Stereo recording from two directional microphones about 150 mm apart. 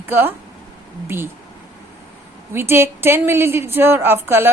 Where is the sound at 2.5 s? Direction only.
15° right (ahead or behind).